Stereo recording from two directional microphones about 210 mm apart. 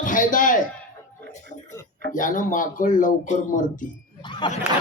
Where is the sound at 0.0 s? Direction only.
40° left (ahead or behind).